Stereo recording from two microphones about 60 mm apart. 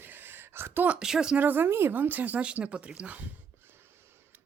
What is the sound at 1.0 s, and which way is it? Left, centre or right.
Speech, centre.